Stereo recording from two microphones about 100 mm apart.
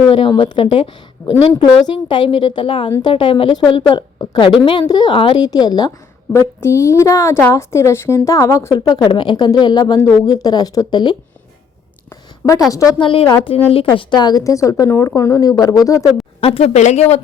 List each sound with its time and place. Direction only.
0.1 s a woman's voice: 60° left (ahead or behind)
5.5 s a woman's voice: 45° left (ahead or behind)
6.3 s a woman's voice: 30° left (ahead or behind); by 11.2 s 50° left (ahead or behind)
12.4 s a woman's voice: 20° left (ahead or behind)
13.0 s a woman's voice: 60° left (ahead or behind)
13.7 s a woman's voice: 70° left (ahead or behind)
14.1 s a woman's voice: 45° left (ahead or behind)
16.4 s a woman's voice: 80° left